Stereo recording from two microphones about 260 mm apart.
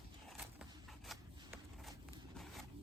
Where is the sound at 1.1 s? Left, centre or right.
Centre.